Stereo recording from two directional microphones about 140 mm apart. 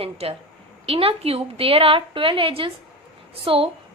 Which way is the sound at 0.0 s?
45° right (ahead or behind).